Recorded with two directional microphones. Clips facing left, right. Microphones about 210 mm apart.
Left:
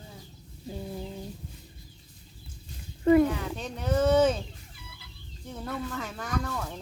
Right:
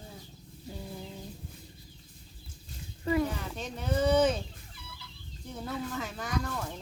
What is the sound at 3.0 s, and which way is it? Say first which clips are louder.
Speech: left 9 dB; 50° left (ahead or behind).